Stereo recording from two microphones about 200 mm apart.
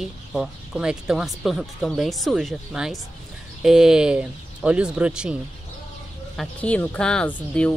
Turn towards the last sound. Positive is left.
turn(degrees=5)  # may be behind; listen again after turning